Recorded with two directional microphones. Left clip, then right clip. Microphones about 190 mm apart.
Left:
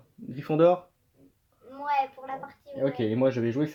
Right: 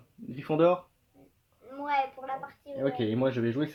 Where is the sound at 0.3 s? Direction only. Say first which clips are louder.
Left 3 dB; 20° left (ahead or behind).